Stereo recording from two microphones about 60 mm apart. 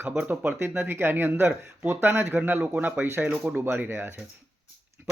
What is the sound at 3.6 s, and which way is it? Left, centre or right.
Speech, right.